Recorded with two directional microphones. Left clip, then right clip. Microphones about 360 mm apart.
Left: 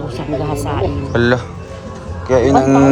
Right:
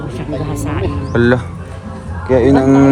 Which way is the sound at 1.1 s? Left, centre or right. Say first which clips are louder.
Right 2 dB; centre.